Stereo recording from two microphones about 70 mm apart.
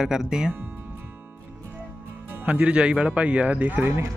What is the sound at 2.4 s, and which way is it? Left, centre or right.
Speech, centre.